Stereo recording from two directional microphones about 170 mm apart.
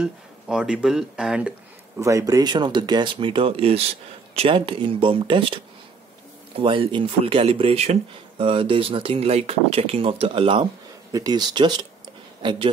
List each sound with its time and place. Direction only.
0.0 s speech: 5° right (ahead or behind)
2.0 s speech: 20° right (ahead or behind)
6.6 s speech: 30° right (ahead or behind)